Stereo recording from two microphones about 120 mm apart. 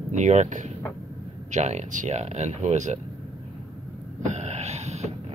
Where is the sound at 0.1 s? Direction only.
80° right.